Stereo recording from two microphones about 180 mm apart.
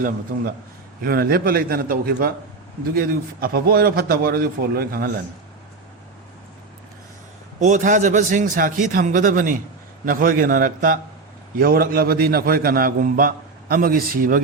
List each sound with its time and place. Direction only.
1.0 s a man's voice: 55° right (ahead or behind)
7.6 s a man's voice: 45° right (ahead or behind)